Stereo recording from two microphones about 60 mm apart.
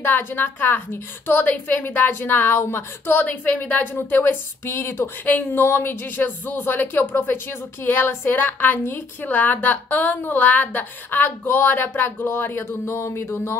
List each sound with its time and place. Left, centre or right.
0.0 s speech: left
9.2 s speech: left